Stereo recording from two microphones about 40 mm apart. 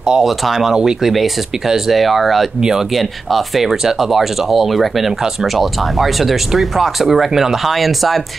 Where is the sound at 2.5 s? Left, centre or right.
Centre.